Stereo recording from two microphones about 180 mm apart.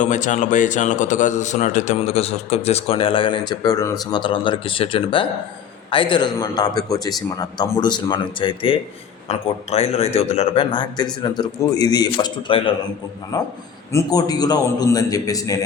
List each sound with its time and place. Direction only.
0.0 s a man's voice: 45° left (ahead or behind); by 15.5 s 20° left (ahead or behind)